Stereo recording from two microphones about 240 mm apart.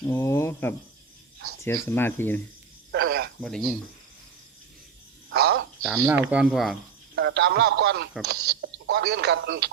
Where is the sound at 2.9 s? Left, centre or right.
Right.